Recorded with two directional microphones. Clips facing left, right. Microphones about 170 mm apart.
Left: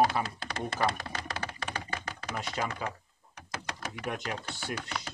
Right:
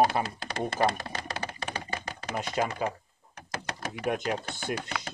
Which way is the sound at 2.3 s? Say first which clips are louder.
Right 5 dB; 20° right (ahead or behind).